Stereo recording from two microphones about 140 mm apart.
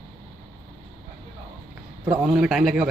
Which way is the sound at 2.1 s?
5° right (ahead or behind).